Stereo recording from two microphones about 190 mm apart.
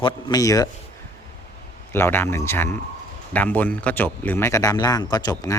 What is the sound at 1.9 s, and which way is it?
Speech, 10° left (ahead or behind).